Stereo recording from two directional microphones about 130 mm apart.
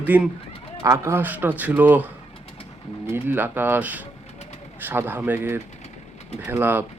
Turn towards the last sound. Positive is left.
turn(degrees=-15)  # may be behind; listen again after turning